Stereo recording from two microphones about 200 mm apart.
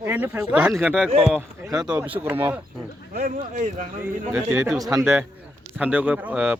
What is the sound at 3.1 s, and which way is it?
Speech, 40° right (ahead or behind).